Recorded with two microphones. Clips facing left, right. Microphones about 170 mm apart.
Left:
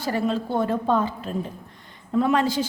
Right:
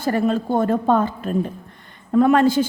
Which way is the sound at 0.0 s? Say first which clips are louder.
Right 5 dB; 50° right (ahead or behind).